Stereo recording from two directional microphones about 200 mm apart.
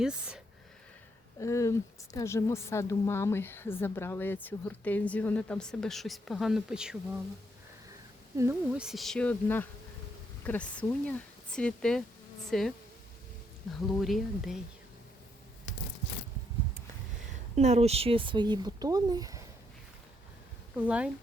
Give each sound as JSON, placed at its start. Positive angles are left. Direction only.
{"t": 0.0, "sound": "a sound", "side_deg": -5}
{"t": 1.4, "sound": "speech", "side_deg": 15}
{"t": 8.4, "sound": "speech", "side_deg": -10}
{"t": 14.0, "sound": "speech", "side_deg": 0}
{"t": 17.5, "sound": "speech", "side_deg": -35}
{"t": 20.8, "sound": "speech", "side_deg": -5}